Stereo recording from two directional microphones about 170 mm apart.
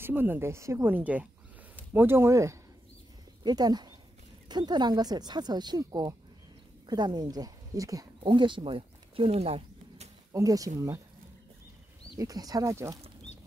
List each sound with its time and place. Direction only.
0.0 s speech: 10° right (ahead or behind); by 10.0 s 35° right (ahead or behind)
10.3 s speech: 20° right (ahead or behind)
12.2 s speech: 20° right (ahead or behind)